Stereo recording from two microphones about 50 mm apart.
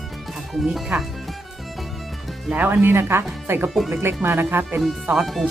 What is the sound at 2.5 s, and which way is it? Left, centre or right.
Speech, right.